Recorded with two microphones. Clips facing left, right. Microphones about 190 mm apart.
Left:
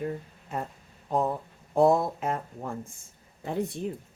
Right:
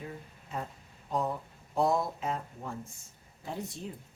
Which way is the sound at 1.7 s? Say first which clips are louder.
Left 7 dB; 55° left (ahead or behind).